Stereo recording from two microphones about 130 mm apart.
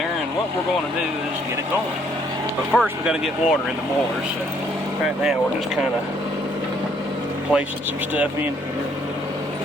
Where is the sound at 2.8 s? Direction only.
Centre (ahead or behind).